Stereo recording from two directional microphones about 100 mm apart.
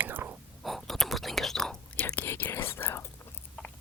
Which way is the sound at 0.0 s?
20° right (ahead or behind).